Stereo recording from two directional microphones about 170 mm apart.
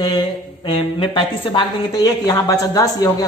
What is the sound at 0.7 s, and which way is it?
A man's voice, 30° left (ahead or behind).